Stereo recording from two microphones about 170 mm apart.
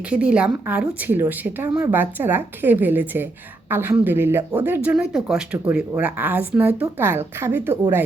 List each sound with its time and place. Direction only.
0.1 s a woman's voice: 5° right (ahead or behind)